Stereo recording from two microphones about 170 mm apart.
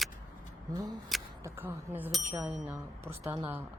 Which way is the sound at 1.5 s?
15° right (ahead or behind).